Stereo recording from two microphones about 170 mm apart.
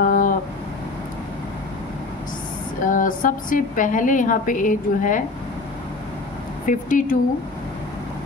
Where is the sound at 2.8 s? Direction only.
50° left (ahead or behind).